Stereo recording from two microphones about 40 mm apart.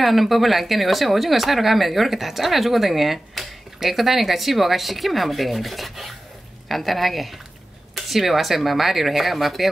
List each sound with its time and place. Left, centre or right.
0.0 s speech: centre